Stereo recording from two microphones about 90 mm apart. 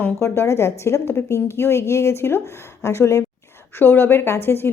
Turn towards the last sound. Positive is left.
turn(degrees=25)  # may be behind; listen again after turning